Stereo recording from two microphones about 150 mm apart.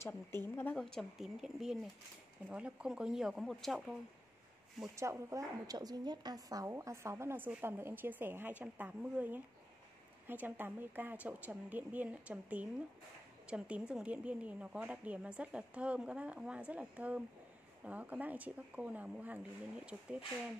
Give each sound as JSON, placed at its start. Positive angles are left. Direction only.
{"t": 0.0, "sound": "speech", "side_deg": 15}
{"t": 4.8, "sound": "a woman's voice", "side_deg": -20}